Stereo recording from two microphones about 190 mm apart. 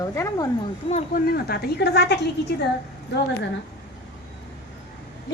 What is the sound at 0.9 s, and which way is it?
Speech, 35° left (ahead or behind).